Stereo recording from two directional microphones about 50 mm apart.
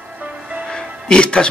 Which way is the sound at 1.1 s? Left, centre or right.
Centre.